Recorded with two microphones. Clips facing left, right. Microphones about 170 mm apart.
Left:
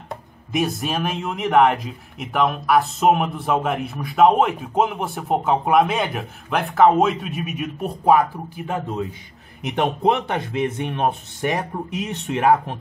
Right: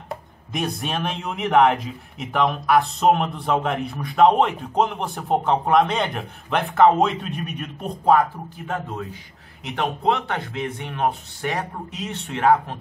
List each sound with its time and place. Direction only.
0.1 s a man's voice: centre (ahead or behind)